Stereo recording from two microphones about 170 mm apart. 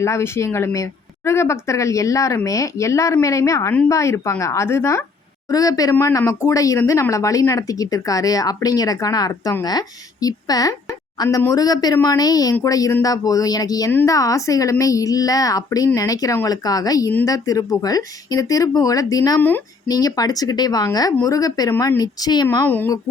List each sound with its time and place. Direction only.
0.0 s speech: 15° left (ahead or behind)
22.4 s speech: 10° left (ahead or behind)